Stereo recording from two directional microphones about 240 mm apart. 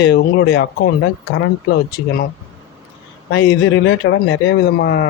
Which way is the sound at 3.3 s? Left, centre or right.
Left.